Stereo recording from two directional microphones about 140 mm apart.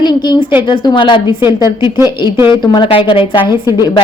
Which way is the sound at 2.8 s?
35° left (ahead or behind).